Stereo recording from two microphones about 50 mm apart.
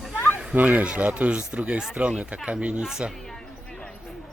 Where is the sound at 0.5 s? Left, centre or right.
Right.